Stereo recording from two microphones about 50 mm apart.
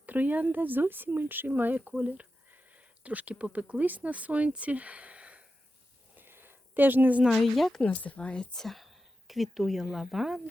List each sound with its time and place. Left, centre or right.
0.0 s speech: right
6.1 s a sound: right
7.3 s speech: centre
7.8 s speech: left
8.6 s speech: centre